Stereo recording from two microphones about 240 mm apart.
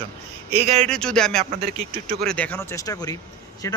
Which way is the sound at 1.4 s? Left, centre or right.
Right.